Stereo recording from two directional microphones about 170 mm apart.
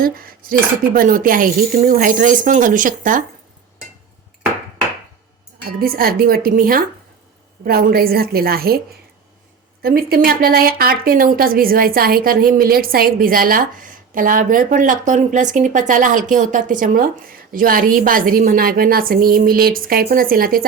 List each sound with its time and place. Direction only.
0.0 s a woman's voice: 60° right (ahead or behind)
5.6 s a woman's voice: 60° right (ahead or behind)
9.8 s a woman's voice: 60° right (ahead or behind)